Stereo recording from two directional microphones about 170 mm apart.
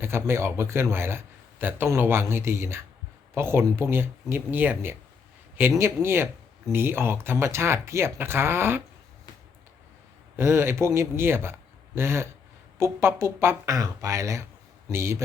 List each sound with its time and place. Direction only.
0.0 s a man's voice: 15° right (ahead or behind)
10.3 s a man's voice: 15° right (ahead or behind)